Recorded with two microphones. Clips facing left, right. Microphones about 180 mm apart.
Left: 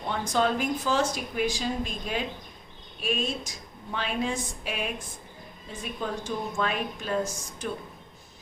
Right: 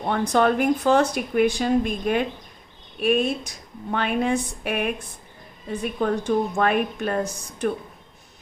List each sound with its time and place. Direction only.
0.0 s speech: 55° right (ahead or behind)